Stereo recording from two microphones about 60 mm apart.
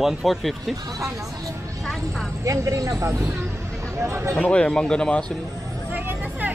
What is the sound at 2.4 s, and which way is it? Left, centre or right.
Speech, right.